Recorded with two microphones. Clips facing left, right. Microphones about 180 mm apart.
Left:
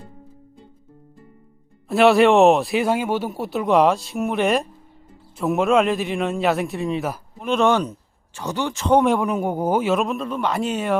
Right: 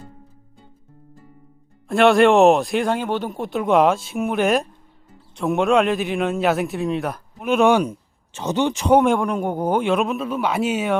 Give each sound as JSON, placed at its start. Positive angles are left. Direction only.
{"t": 1.9, "sound": "speech", "side_deg": 0}
{"t": 8.3, "sound": "speech", "side_deg": -20}
{"t": 9.0, "sound": "speech", "side_deg": 0}